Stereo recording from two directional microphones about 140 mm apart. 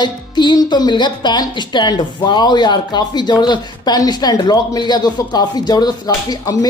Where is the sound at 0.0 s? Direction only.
30° left (ahead or behind).